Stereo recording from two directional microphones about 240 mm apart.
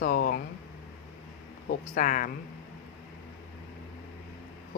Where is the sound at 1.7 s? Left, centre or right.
Left.